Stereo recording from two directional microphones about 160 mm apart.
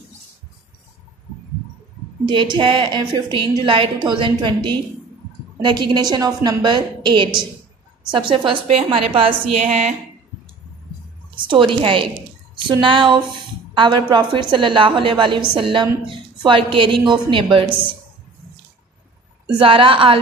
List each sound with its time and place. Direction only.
2.2 s a woman's voice: 30° right (ahead or behind); by 9.9 s 45° right (ahead or behind)
11.3 s a woman's voice: 30° right (ahead or behind)
19.6 s a woman's voice: 35° right (ahead or behind)